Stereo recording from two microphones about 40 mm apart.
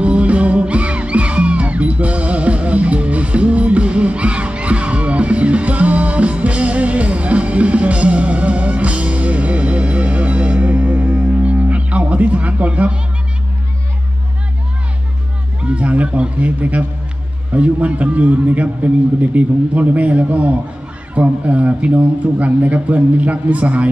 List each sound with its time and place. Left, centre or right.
0.0 s music: right
15.6 s a sound: right
17.5 s a man's voice: right